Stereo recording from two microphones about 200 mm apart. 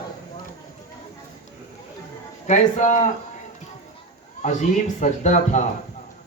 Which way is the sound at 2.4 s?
35° left (ahead or behind).